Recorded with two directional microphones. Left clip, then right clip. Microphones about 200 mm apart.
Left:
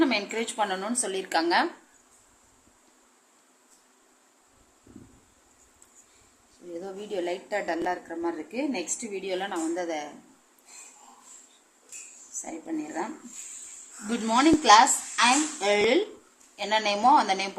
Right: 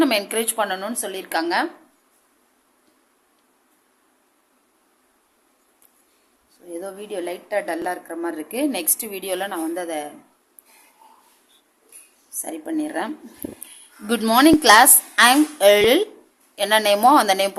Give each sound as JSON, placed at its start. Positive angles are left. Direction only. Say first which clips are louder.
{"t": 0.0, "sound": "a woman's voice", "louder": "right 6 dB", "side_deg": -35}
{"t": 6.7, "sound": "a woman's voice", "louder": "right 4 dB", "side_deg": -20}
{"t": 12.4, "sound": "a woman's voice", "louder": "right 8 dB", "side_deg": -30}
{"t": 14.1, "sound": "a woman's voice", "louder": "right 7 dB", "side_deg": -40}